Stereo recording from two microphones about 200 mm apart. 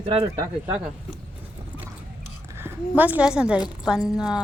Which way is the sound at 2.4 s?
10° right (ahead or behind).